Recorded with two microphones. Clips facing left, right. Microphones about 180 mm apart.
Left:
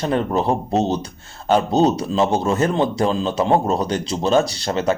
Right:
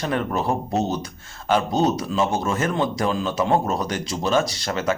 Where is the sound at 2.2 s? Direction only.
40° left (ahead or behind).